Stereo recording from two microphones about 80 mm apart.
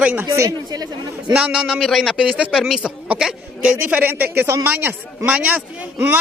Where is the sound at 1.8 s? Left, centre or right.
Centre.